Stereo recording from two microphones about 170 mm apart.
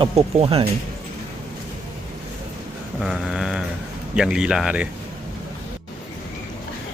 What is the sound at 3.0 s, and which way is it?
Mantra, 5° right (ahead or behind).